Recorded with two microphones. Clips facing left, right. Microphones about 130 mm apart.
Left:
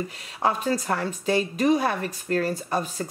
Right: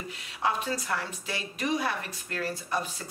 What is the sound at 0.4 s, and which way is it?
A woman's voice, 40° left (ahead or behind).